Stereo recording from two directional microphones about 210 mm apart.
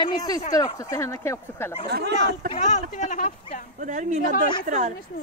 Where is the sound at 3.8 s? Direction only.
35° right (ahead or behind).